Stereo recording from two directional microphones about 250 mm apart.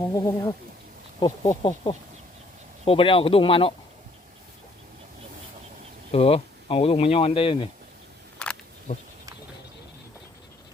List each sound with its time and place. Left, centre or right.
0.1 s speech: centre
6.1 s speech: left
8.4 s a sound: centre